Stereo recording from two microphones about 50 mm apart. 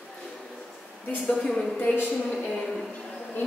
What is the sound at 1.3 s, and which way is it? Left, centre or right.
Speech, centre.